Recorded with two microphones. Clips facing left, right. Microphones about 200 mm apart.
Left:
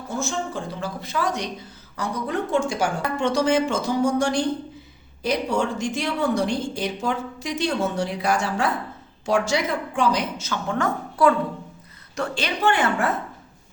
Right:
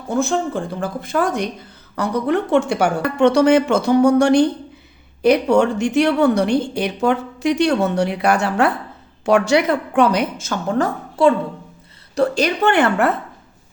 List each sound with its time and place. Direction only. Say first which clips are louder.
0.2 s speech: right 9 dB; 55° right (ahead or behind)
2.0 s speech: right 7 dB; 65° right (ahead or behind); by 11.3 s 30° right (ahead or behind)
12.1 s a woman's voice: right 10 dB; 40° right (ahead or behind)
12.6 s speech: right 4 dB; 60° right (ahead or behind)